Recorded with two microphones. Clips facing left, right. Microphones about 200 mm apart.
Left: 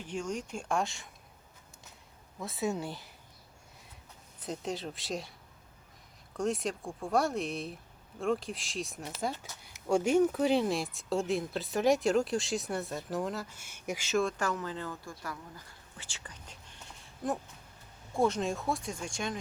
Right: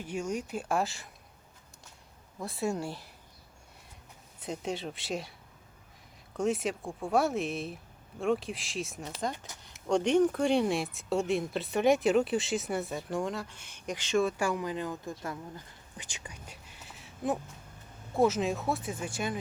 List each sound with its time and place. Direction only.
0.0 s speech: 10° right (ahead or behind)
2.4 s speech: centre (ahead or behind)
4.4 s speech: centre (ahead or behind)
6.3 s speech: centre (ahead or behind)
14.3 s speech: 10° right (ahead or behind)
16.0 s whispering: 15° right (ahead or behind)
18.1 s speech: 5° right (ahead or behind)